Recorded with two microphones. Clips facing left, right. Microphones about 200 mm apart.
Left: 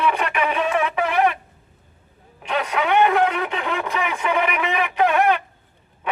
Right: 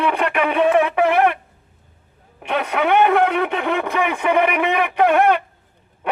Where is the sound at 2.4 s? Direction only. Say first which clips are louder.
Right 3 dB; 60° right (ahead or behind).